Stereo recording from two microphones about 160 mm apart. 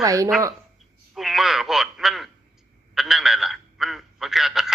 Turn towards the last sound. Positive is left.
turn(degrees=0)  # may be behind; listen again after turning